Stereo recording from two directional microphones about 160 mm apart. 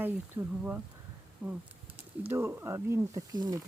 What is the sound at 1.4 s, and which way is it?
Speech, 10° right (ahead or behind).